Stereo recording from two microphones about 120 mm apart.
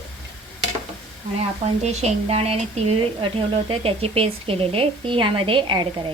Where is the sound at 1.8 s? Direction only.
60° right (ahead or behind); by 6.1 s 45° right (ahead or behind).